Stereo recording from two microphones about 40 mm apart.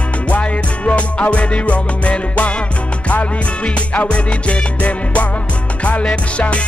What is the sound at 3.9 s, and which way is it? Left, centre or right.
Music, left.